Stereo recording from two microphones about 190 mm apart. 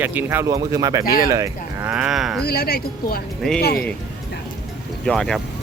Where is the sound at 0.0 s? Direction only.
10° right (ahead or behind).